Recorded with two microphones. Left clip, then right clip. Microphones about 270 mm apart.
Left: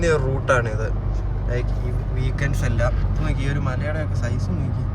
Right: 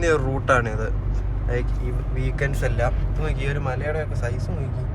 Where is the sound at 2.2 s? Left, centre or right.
Centre.